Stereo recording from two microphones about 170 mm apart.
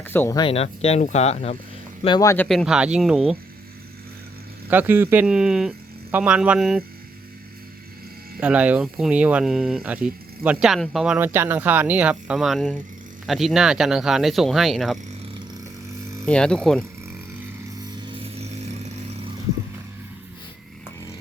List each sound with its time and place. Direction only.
0.0 s speech: 10° left (ahead or behind)
0.3 s speech: 35° left (ahead or behind)
2.0 s speech: 25° left (ahead or behind)
2.5 s speech: centre (ahead or behind)
4.7 s speech: 10° right (ahead or behind)
8.4 s speech: 10° right (ahead or behind)
16.2 s speech: 5° left (ahead or behind)
17.9 s vehicle: 30° right (ahead or behind)